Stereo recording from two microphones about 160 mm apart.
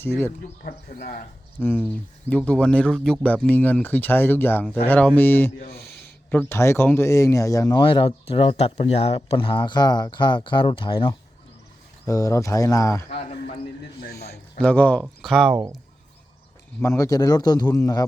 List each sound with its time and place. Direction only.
0.0 s speech: 15° left (ahead or behind)
0.6 s speech: 65° left (ahead or behind)
1.5 s speech: 15° left (ahead or behind)
5.5 s speech: 65° left (ahead or behind)
6.3 s speech: 15° left (ahead or behind); by 11.1 s 30° left (ahead or behind)
12.0 s speech: 20° left (ahead or behind)
14.0 s a man's voice: 75° left (ahead or behind)
14.6 s speech: 10° left (ahead or behind)
16.8 s speech: 20° left (ahead or behind)